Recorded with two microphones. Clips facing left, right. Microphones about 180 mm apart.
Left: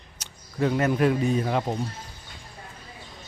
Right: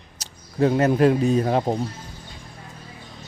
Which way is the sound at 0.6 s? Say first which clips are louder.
Right 5 dB; 35° right (ahead or behind).